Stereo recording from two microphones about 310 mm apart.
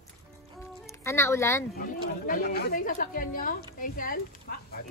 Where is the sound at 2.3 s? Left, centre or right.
Left.